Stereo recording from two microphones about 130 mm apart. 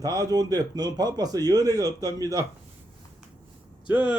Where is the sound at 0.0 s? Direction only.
30° right (ahead or behind).